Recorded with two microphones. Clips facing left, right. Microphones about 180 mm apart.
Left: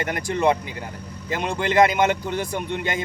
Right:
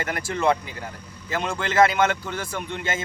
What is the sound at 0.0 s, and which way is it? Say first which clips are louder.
A man's voice: left 2 dB; 20° left (ahead or behind).